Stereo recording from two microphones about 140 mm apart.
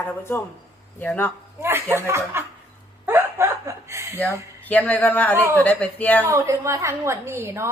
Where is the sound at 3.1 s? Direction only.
20° right (ahead or behind).